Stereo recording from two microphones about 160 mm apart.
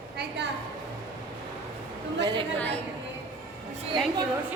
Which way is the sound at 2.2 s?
30° right (ahead or behind).